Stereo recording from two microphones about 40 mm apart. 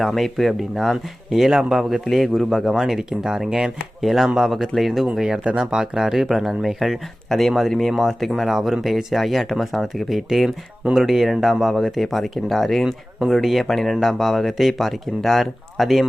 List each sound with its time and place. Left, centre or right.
0.0 s speech: centre
4.0 s speech: centre
5.1 s speech: centre